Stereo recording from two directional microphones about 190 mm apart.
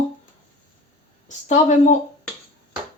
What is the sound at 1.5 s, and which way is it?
Speech, 40° left (ahead or behind).